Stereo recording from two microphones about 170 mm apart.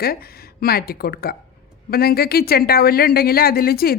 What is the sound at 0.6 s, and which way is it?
A woman's voice, 65° left (ahead or behind).